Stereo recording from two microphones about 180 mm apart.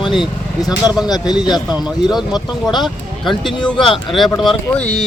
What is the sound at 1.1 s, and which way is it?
Speech, 25° left (ahead or behind).